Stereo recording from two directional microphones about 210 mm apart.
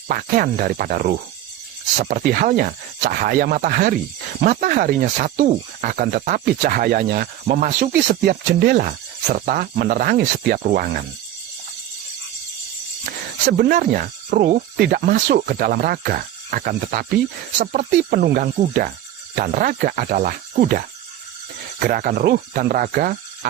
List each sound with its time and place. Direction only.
0.1 s speech: 40° right (ahead or behind)
13.4 s speech: 50° right (ahead or behind)